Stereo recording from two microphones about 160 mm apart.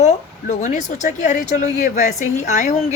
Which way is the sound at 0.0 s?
45° left (ahead or behind).